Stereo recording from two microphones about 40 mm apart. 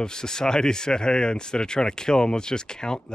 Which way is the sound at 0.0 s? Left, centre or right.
Centre.